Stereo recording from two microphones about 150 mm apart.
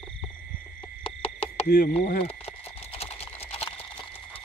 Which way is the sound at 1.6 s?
75° left (ahead or behind).